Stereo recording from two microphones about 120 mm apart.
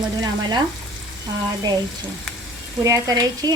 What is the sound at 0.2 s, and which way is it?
Speech, 35° right (ahead or behind).